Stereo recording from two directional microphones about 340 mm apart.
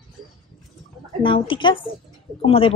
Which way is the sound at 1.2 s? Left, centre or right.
Centre.